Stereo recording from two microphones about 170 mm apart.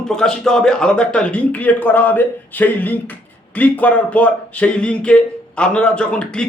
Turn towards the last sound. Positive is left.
turn(degrees=5)  # may be behind; listen again after turning